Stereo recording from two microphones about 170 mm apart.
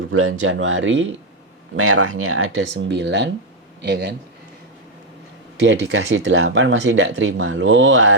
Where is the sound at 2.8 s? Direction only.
90° right.